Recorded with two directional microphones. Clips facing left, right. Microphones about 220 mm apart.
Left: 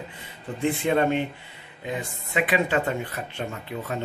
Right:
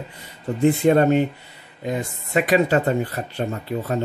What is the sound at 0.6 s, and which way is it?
Speech, 40° right (ahead or behind).